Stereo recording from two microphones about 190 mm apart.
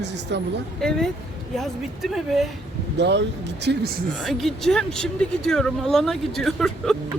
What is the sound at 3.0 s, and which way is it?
Speech, 65° right (ahead or behind).